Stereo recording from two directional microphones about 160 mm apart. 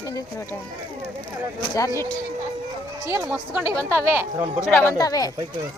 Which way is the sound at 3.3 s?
Centre (ahead or behind).